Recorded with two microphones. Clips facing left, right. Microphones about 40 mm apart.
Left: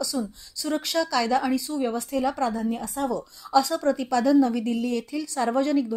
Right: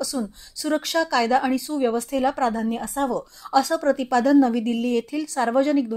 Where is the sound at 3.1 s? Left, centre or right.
Right.